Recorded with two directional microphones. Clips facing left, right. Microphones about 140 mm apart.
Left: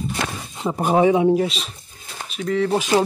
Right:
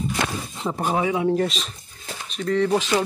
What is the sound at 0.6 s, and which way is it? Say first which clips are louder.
Speech: left 3 dB; 15° left (ahead or behind).